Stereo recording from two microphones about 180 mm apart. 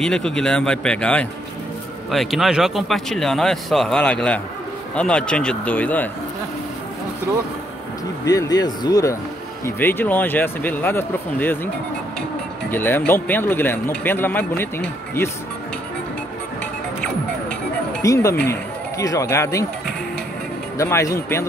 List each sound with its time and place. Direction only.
0.0 s speech: 5° left (ahead or behind)
8.3 s speech: 20° left (ahead or behind)
12.7 s speech: 10° left (ahead or behind)
18.0 s speech: 15° left (ahead or behind)
20.7 s speech: 15° left (ahead or behind)